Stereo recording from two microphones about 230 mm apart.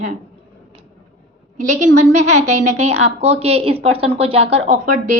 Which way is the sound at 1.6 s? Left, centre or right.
Right.